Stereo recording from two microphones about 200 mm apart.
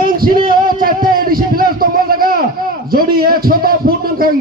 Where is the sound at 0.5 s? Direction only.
45° right (ahead or behind).